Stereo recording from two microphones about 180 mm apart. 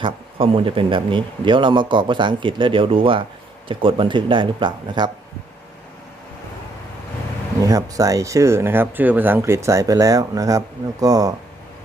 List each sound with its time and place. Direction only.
0.0 s speech: 30° right (ahead or behind)
7.6 s speech: 20° right (ahead or behind)